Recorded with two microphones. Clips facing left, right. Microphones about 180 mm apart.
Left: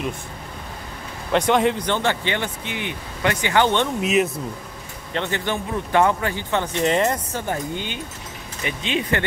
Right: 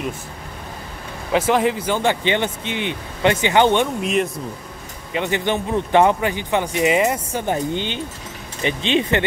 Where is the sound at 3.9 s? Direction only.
5° left (ahead or behind).